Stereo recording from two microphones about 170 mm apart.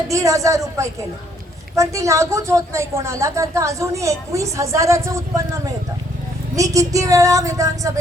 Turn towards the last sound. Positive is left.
turn(degrees=-20)  # may be behind; listen again after turning